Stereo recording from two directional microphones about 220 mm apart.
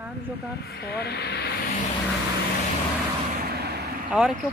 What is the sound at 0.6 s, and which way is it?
Speech, 45° left (ahead or behind).